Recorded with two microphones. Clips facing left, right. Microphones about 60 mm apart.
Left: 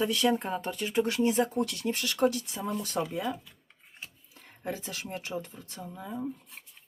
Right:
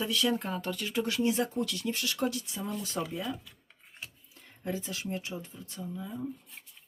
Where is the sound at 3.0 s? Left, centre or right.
Left.